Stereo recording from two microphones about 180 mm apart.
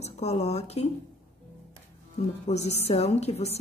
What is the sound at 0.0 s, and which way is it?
Speech, 35° left (ahead or behind).